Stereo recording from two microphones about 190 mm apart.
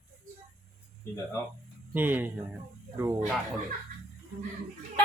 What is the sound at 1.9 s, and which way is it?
Speech, 10° right (ahead or behind).